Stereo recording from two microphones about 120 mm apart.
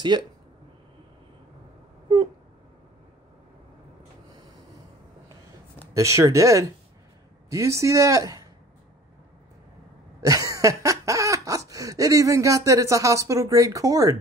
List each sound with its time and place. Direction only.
0.1 s speech: 40° right (ahead or behind)
5.9 s cough: 25° right (ahead or behind)
10.2 s cough: 30° right (ahead or behind)